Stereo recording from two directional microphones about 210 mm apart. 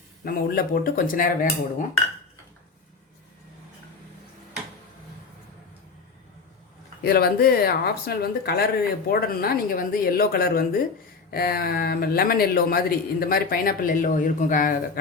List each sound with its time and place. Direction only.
0.3 s speech: 45° left (ahead or behind)
7.0 s speech: 45° left (ahead or behind)